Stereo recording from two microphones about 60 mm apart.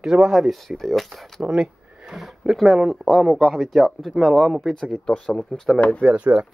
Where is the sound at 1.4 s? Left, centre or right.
Centre.